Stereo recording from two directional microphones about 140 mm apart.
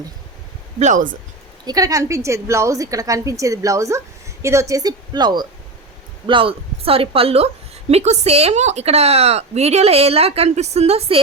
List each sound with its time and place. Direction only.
0.8 s speech: 60° right (ahead or behind)
1.6 s a woman's voice: 25° right (ahead or behind); by 11.2 s 45° right (ahead or behind)